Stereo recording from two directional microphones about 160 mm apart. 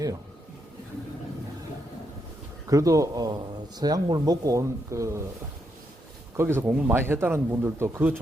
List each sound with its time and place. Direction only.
2.6 s speech: 20° right (ahead or behind)
6.3 s speech: 15° right (ahead or behind)